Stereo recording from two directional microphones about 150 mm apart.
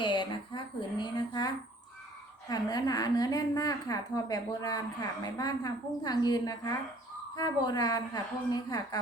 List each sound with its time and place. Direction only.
0.0 s a woman's voice: 30° left (ahead or behind)